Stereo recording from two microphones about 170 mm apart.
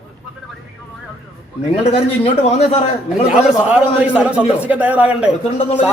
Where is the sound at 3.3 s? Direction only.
5° right (ahead or behind).